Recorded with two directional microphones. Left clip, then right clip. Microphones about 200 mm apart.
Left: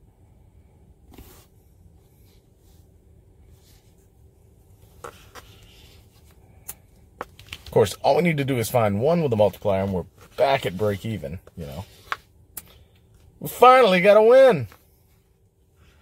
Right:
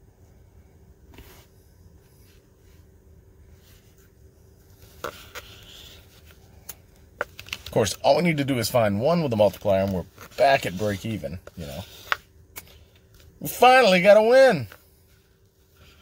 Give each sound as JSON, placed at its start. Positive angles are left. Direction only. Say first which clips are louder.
{"t": 7.7, "sound": "speech", "louder": "left 2 dB", "side_deg": 15}
{"t": 13.6, "sound": "speech", "louder": "left 2 dB", "side_deg": 20}